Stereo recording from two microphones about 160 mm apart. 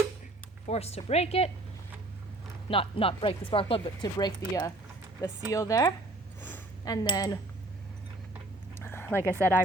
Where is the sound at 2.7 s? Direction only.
35° left (ahead or behind).